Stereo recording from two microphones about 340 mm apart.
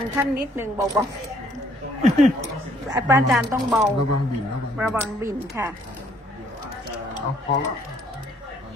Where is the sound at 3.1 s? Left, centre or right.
Centre.